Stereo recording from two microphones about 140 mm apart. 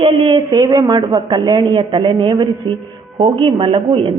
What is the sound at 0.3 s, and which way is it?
A woman's voice, 25° right (ahead or behind).